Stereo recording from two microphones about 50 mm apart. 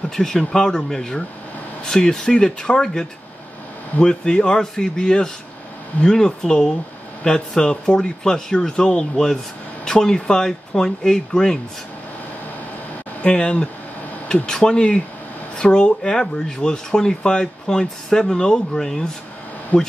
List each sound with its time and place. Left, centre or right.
0.1 s speech: centre
13.2 s speech: centre
19.7 s speech: left